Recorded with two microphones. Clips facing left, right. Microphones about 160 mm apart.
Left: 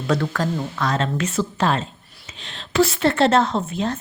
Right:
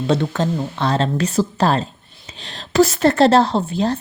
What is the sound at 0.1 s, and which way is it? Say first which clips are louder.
A woman's voice: right 2 dB; 25° right (ahead or behind).